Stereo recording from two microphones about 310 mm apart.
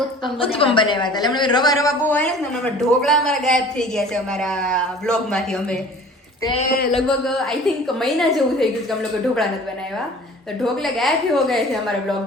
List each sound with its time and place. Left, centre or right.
0.3 s a woman's voice: centre
6.4 s a woman's voice: centre
6.7 s speech: left
6.9 s a woman's voice: centre
10.6 s a woman's voice: centre